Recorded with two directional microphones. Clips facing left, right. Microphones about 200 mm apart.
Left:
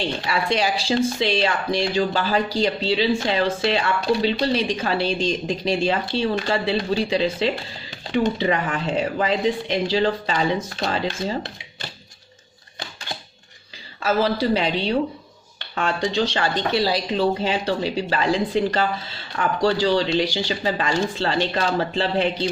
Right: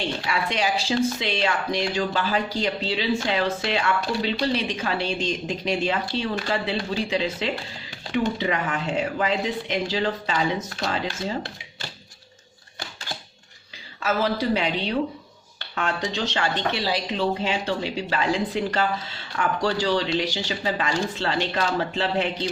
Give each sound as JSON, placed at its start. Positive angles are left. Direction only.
{"t": 0.3, "sound": "speech", "side_deg": 35}
{"t": 14.0, "sound": "speech", "side_deg": 30}